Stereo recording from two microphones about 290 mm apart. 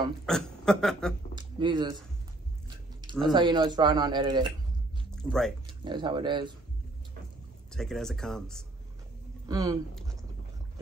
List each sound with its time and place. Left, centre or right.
0.3 s speech: centre
1.3 s speech: centre
3.3 s speech: centre
5.1 s speech: centre
5.7 s speech: centre
7.7 s speech: centre
9.5 s speech: centre